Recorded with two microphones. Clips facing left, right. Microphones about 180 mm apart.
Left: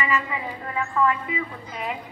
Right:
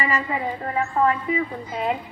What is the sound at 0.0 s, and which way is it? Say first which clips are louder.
A woman's voice: right 2 dB; 35° right (ahead or behind).